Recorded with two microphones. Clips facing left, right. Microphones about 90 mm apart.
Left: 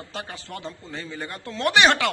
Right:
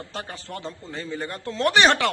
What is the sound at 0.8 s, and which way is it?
Speech, 25° right (ahead or behind).